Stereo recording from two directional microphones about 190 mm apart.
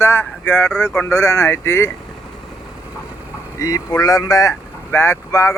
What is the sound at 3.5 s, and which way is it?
Speech, 15° left (ahead or behind).